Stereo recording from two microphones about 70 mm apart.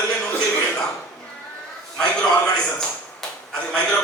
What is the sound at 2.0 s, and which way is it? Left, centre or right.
A man's voice, centre.